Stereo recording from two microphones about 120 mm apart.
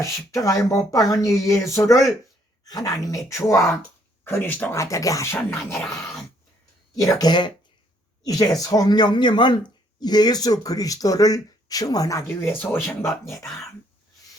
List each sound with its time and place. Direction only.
0.0 s speech: 25° left (ahead or behind)
5.8 s dog: centre (ahead or behind)
7.0 s speech: 30° left (ahead or behind)